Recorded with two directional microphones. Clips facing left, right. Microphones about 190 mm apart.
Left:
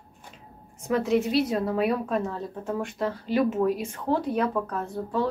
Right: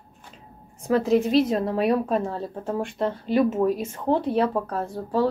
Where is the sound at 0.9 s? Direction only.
35° right (ahead or behind).